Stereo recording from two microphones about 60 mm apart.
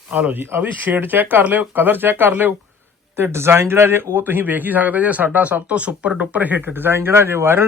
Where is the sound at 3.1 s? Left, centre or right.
Right.